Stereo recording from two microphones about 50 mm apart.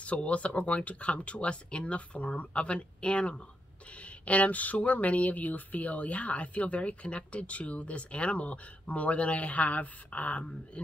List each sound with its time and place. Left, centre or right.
0.0 s speech: left